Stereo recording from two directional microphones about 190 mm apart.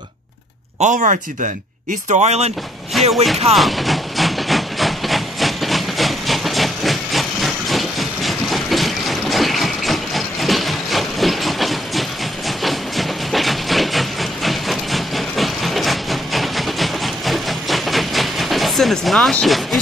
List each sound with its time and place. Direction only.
0.7 s speech: 40° right (ahead or behind)
2.9 s music: centre (ahead or behind)
3.5 s train: centre (ahead or behind)